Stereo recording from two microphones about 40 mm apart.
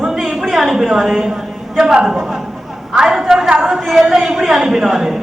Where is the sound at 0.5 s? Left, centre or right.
Centre.